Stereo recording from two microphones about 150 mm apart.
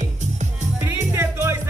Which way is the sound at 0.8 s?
15° right (ahead or behind).